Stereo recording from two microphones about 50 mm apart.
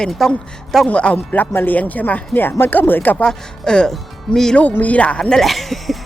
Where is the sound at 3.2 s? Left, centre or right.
Centre.